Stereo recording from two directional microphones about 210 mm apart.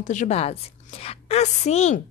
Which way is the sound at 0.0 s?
35° left (ahead or behind).